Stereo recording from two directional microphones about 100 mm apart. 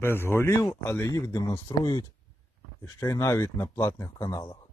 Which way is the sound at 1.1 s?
35° left (ahead or behind).